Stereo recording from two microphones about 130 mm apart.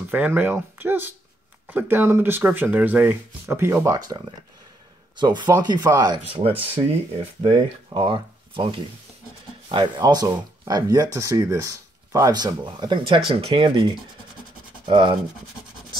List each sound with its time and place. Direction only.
0.1 s speech: 15° right (ahead or behind)
5.2 s speech: 35° right (ahead or behind)
7.9 s speech: 40° right (ahead or behind)
14.9 s speech: 40° right (ahead or behind)